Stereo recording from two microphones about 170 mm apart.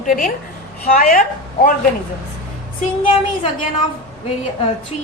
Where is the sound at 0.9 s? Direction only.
55° left (ahead or behind).